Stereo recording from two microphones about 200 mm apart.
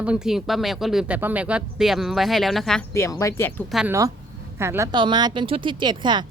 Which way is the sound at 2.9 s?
15° left (ahead or behind).